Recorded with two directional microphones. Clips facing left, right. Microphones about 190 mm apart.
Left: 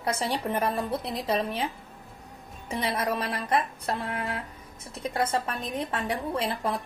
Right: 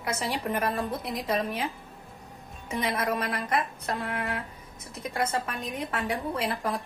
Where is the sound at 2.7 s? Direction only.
30° left (ahead or behind).